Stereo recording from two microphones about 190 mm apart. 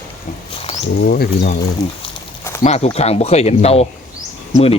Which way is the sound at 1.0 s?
55° left (ahead or behind).